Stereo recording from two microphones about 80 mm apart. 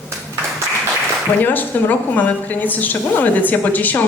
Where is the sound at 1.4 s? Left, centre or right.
Left.